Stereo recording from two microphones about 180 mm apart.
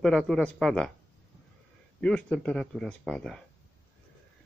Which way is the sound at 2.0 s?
5° left (ahead or behind).